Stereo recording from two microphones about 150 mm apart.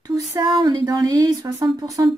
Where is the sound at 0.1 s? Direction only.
25° right (ahead or behind).